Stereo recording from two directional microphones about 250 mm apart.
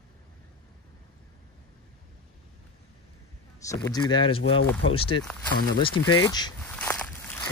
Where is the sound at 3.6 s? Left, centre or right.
Centre.